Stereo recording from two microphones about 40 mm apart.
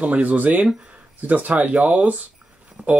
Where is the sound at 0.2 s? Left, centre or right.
Right.